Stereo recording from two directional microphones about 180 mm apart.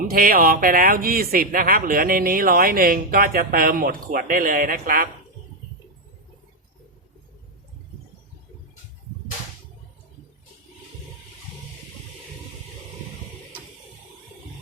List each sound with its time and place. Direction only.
0.1 s speech: 55° right (ahead or behind)